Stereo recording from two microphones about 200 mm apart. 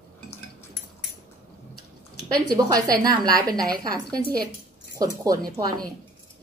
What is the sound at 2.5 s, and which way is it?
A woman's voice, 20° right (ahead or behind).